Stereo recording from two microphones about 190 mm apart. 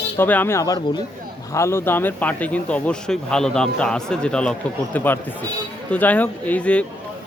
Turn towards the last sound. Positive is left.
turn(degrees=5)  # may be behind; listen again after turning